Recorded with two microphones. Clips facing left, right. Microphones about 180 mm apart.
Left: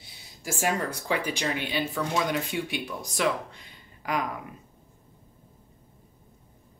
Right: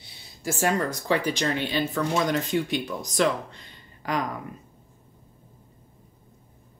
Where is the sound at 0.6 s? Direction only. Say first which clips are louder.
Right 3 dB; 10° left (ahead or behind).